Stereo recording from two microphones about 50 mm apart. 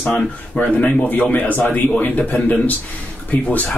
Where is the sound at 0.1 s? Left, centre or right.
Left.